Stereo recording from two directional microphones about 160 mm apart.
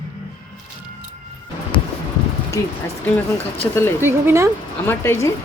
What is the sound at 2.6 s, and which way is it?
Speech, 20° left (ahead or behind).